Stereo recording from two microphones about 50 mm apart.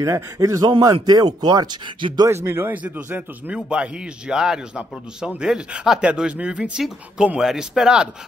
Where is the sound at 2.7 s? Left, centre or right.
Right.